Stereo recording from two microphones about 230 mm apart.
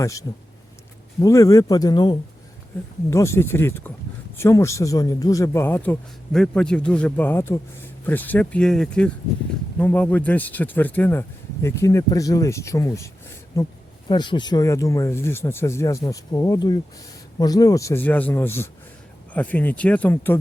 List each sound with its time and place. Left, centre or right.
0.0 s a man's voice: centre